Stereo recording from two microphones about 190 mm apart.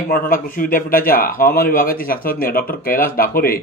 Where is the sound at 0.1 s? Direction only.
50° left (ahead or behind).